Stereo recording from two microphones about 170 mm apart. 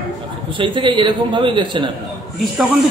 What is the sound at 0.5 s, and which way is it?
A man's voice, 30° right (ahead or behind).